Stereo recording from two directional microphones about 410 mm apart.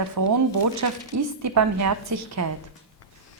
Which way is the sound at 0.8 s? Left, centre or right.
Right.